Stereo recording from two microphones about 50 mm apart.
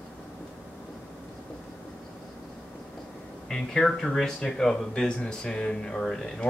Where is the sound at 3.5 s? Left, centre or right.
Centre.